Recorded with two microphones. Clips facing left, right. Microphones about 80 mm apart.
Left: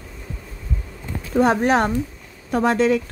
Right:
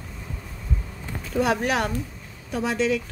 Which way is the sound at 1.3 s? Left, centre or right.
Left.